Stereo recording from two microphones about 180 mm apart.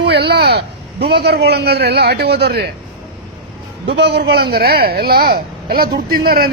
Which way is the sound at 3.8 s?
70° right (ahead or behind).